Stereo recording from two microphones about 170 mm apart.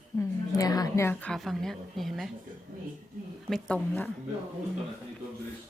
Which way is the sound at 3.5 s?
5° left (ahead or behind).